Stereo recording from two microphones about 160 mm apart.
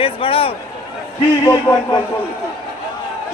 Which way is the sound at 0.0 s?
35° left (ahead or behind).